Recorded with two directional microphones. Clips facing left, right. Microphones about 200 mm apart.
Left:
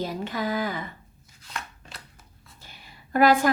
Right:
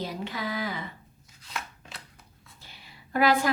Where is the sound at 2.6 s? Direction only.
50° left (ahead or behind).